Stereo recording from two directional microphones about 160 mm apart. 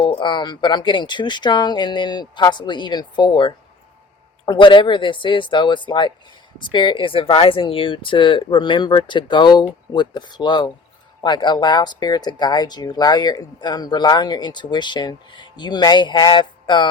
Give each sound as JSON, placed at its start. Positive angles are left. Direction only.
{"t": 0.1, "sound": "speech", "side_deg": 30}